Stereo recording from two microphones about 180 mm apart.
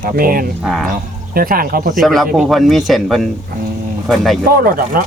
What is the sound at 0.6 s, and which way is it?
Speech, centre (ahead or behind).